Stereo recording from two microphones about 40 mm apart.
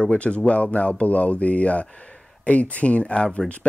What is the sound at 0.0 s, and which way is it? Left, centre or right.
Speech, left.